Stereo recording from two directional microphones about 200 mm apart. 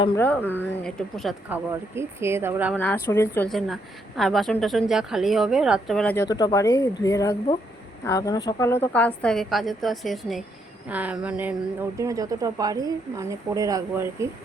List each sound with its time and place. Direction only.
0.2 s speech: 10° left (ahead or behind); by 2.7 s 10° right (ahead or behind)
2.7 s speech: 10° left (ahead or behind)
6.2 s speech: 20° left (ahead or behind); by 14.3 s 15° right (ahead or behind)